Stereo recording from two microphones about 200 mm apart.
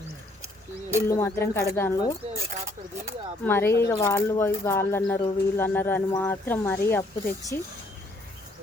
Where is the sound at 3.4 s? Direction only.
10° left (ahead or behind).